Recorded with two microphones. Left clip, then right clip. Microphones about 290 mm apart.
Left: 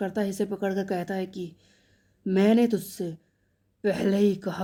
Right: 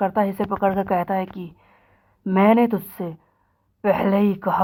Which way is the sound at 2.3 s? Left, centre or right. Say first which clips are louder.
Right 6 dB; centre.